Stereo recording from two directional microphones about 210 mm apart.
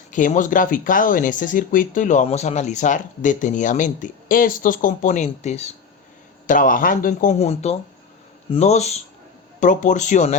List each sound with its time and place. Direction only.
0.1 s speech: 35° left (ahead or behind)